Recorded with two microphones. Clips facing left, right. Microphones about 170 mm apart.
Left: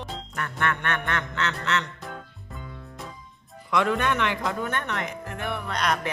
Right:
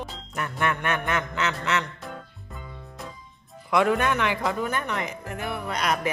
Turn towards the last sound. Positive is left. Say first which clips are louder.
# right 1 dB
turn(degrees=-5)  # may be behind; listen again after turning